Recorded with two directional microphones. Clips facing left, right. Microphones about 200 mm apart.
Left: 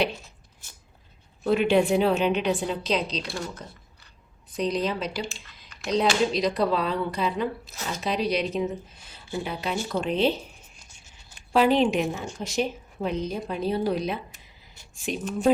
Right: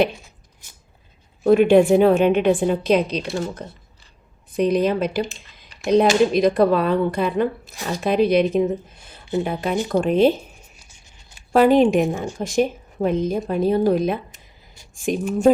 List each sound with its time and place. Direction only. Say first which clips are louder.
1.5 s a woman's voice: right 8 dB; 50° right (ahead or behind)
10.8 s a sound: right 2 dB; 10° right (ahead or behind)
11.5 s a woman's voice: right 6 dB; 50° right (ahead or behind)